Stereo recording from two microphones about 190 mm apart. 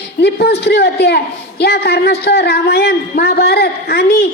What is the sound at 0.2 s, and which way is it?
A man's voice, 60° left (ahead or behind).